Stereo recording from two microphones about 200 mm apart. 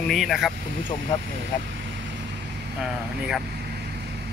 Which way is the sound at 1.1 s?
20° left (ahead or behind).